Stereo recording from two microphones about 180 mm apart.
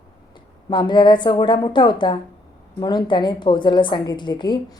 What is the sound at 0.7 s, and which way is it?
A woman's voice, 25° left (ahead or behind).